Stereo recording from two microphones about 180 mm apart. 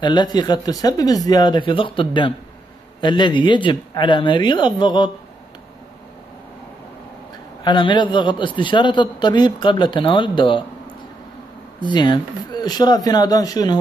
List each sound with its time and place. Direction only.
0.0 s a man's voice: 25° left (ahead or behind)
7.6 s a man's voice: 25° left (ahead or behind)
11.8 s a man's voice: 25° left (ahead or behind)